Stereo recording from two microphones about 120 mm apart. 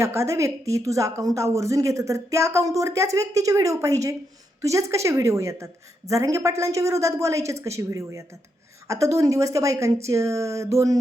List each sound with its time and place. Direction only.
0.0 s speech: 25° right (ahead or behind)